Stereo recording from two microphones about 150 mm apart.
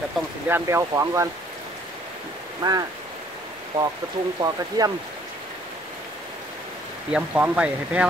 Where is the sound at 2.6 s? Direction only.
25° right (ahead or behind).